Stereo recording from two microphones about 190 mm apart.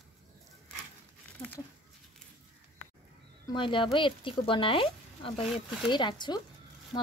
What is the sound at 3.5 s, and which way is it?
Speech, 25° left (ahead or behind).